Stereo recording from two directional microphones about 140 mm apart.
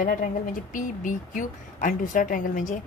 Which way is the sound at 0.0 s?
75° left (ahead or behind).